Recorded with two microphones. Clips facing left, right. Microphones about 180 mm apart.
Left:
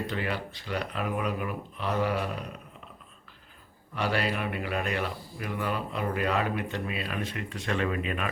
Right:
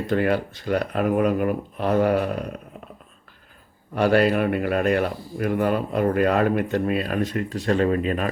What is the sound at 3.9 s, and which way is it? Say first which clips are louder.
Speech: right 11 dB; 50° right (ahead or behind).